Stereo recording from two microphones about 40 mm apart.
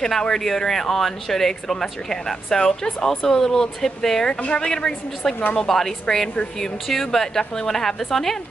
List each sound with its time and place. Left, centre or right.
0.2 s speech: centre
4.4 s a woman's voice: left
4.6 s speech: centre